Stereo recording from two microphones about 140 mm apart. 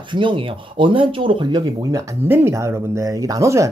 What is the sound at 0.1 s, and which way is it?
Speech, 35° right (ahead or behind).